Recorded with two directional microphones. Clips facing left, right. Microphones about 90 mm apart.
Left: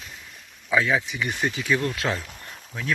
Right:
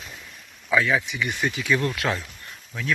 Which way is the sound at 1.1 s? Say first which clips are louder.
Even; 35° left (ahead or behind).